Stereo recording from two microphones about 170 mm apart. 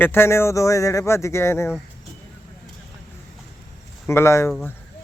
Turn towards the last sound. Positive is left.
turn(degrees=15)  # may be behind; listen again after turning